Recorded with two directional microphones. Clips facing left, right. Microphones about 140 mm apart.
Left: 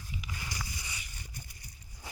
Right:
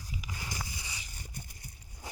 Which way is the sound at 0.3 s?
20° right (ahead or behind).